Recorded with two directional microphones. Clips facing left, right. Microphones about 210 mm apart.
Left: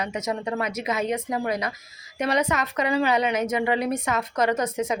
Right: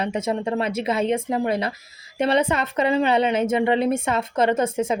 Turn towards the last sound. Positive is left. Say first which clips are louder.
# right 3 dB
turn(degrees=-30)  # may be behind; listen again after turning